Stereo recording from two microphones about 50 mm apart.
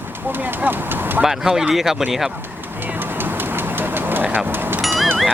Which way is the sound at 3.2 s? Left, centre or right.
Right.